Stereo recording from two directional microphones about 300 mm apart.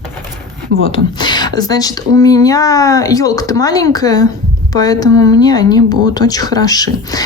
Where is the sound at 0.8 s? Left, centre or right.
Centre.